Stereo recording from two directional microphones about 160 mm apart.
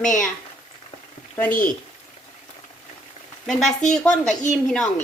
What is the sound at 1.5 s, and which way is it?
Speech, 60° left (ahead or behind).